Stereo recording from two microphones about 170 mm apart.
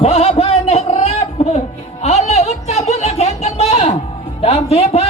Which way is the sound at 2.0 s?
40° left (ahead or behind).